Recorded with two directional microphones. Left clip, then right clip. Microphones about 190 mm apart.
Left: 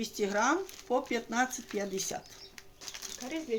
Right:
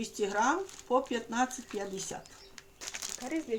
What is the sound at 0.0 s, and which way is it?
Speech, 25° left (ahead or behind).